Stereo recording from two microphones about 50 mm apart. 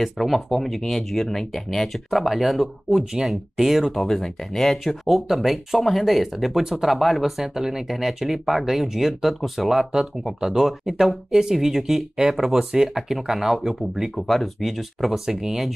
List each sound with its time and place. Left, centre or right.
0.0 s speech: centre